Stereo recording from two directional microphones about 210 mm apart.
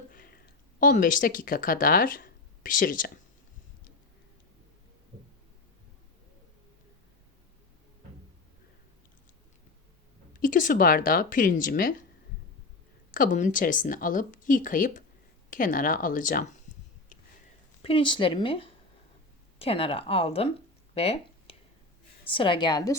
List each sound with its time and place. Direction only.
0.1 s speech: 45° left (ahead or behind)
10.3 s speech: 40° left (ahead or behind)
13.1 s speech: 40° left (ahead or behind)
17.8 s speech: 25° left (ahead or behind)
20.9 s a sound: 30° left (ahead or behind)
22.3 s speech: 25° left (ahead or behind)